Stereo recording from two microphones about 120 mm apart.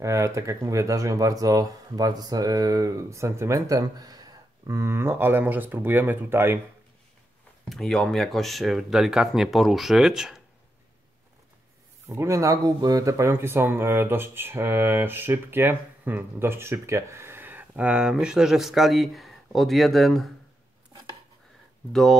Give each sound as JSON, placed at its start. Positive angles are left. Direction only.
{"t": 0.0, "sound": "speech", "side_deg": -25}
{"t": 7.7, "sound": "speech", "side_deg": 5}
{"t": 12.1, "sound": "speech", "side_deg": -25}